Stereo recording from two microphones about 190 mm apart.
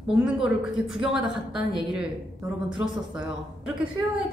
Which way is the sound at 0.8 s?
90° left.